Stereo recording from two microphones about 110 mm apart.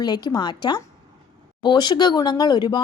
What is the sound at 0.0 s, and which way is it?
Speech, 40° left (ahead or behind).